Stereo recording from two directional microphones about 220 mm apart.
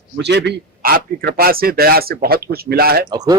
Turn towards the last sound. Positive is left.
turn(degrees=-15)  # may be behind; listen again after turning